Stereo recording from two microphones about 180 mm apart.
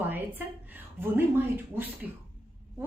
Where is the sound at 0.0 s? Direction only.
10° right (ahead or behind).